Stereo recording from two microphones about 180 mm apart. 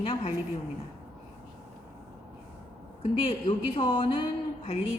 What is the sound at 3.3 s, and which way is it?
Speech, 30° left (ahead or behind).